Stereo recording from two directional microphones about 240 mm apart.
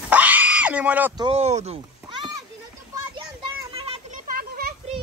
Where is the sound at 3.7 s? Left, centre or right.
Right.